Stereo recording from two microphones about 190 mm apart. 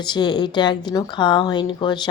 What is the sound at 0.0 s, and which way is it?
Speech, 25° left (ahead or behind).